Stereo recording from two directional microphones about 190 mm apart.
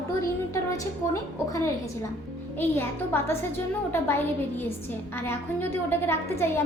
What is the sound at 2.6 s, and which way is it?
A woman's voice, 10° left (ahead or behind).